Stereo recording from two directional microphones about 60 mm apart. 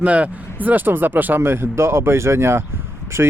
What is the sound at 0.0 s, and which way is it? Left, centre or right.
Speech, right.